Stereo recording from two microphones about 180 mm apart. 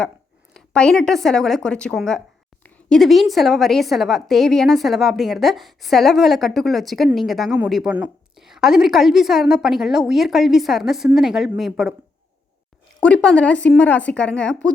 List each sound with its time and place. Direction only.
0.5 s a woman's voice: 5° left (ahead or behind)
13.0 s a woman's voice: 5° left (ahead or behind)